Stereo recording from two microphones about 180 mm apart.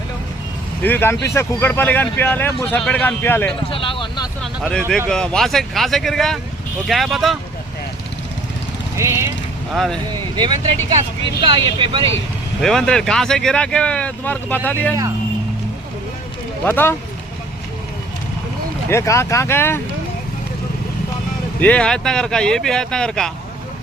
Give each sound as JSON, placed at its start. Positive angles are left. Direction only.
{"t": 0.8, "sound": "speech", "side_deg": 10}
{"t": 3.7, "sound": "speech", "side_deg": 30}
{"t": 5.0, "sound": "speech", "side_deg": 5}
{"t": 9.0, "sound": "speech", "side_deg": -15}
{"t": 9.7, "sound": "speech", "side_deg": 0}
{"t": 10.3, "sound": "speech", "side_deg": -25}
{"t": 12.6, "sound": "speech", "side_deg": 5}
{"t": 16.6, "sound": "speech", "side_deg": 10}
{"t": 18.9, "sound": "speech", "side_deg": 15}
{"t": 21.6, "sound": "speech", "side_deg": 5}